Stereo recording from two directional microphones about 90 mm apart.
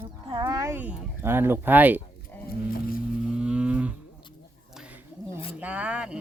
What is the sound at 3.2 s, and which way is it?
Moo, 10° right (ahead or behind).